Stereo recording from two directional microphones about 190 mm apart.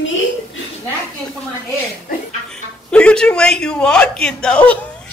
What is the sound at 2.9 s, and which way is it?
A man's voice, 5° left (ahead or behind).